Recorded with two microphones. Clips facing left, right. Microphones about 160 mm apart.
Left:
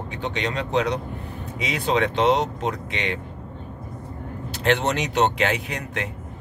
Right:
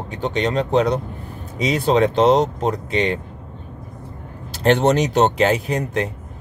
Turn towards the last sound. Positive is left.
turn(degrees=-35)  # may be behind; listen again after turning